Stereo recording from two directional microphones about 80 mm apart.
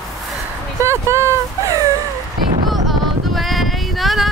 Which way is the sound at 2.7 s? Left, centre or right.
Centre.